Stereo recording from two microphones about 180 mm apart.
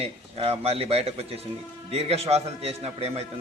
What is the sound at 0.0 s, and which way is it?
A man's voice, 35° right (ahead or behind).